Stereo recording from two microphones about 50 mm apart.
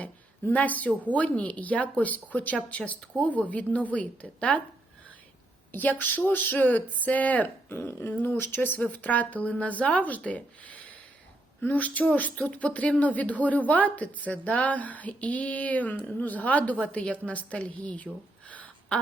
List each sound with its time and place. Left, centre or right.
0.5 s a woman's voice: left
5.7 s a woman's voice: left
7.7 s dog: left
8.1 s a woman's voice: left